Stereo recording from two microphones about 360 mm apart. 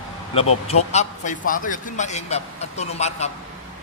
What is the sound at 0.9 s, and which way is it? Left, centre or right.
A man's voice, centre.